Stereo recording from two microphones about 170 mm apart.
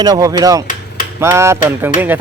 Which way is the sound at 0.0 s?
20° right (ahead or behind).